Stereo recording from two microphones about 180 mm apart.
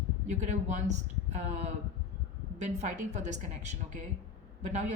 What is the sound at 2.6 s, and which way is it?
A woman's voice, 40° right (ahead or behind).